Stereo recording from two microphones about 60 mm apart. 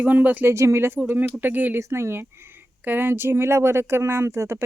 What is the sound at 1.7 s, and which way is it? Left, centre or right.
Speech, right.